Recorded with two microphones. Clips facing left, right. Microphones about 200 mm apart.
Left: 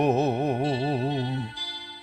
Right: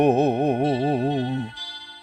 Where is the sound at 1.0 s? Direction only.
40° right (ahead or behind).